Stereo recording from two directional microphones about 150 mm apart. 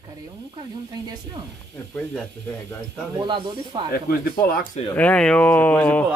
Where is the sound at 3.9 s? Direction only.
80° left.